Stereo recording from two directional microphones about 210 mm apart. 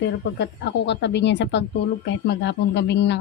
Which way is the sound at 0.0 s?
55° left (ahead or behind).